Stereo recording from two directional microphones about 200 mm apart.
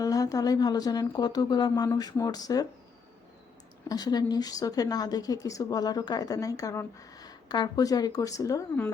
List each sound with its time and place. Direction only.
0.0 s speech: 15° left (ahead or behind)
3.8 s speech: 20° left (ahead or behind)